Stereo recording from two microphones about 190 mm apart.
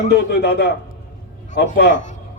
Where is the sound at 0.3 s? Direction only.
60° left (ahead or behind).